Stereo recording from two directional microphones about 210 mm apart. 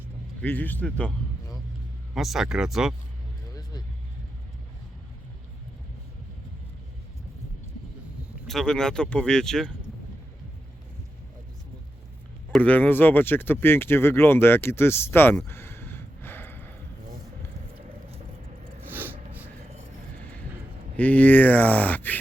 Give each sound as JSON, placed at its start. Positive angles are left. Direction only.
{"t": 0.4, "sound": "speech", "side_deg": 10}
{"t": 2.1, "sound": "speech", "side_deg": 0}
{"t": 3.5, "sound": "vehicle", "side_deg": 20}
{"t": 8.4, "sound": "speech", "side_deg": 5}
{"t": 12.5, "sound": "speech", "side_deg": 5}
{"t": 18.8, "sound": "a sound", "side_deg": -10}
{"t": 20.9, "sound": "speech", "side_deg": 10}